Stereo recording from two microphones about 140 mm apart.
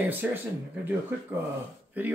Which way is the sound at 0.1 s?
15° right (ahead or behind).